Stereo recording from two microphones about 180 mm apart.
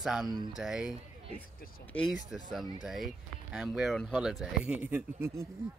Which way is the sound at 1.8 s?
10° left (ahead or behind).